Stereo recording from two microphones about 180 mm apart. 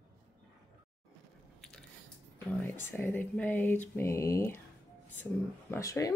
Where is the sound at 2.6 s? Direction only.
10° left (ahead or behind).